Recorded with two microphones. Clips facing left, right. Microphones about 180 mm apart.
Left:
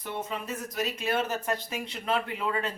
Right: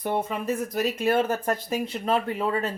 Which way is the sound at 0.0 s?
50° right (ahead or behind).